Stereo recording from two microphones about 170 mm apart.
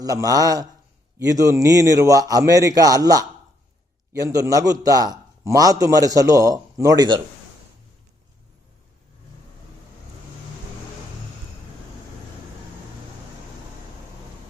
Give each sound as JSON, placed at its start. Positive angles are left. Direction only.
{"t": 0.0, "sound": "a man's voice", "side_deg": -20}